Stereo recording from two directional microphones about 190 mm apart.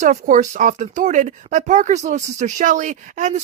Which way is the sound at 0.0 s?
40° right (ahead or behind).